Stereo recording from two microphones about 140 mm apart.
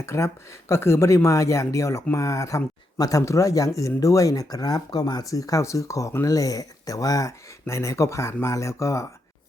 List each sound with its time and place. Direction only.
0.0 s speech: 20° left (ahead or behind)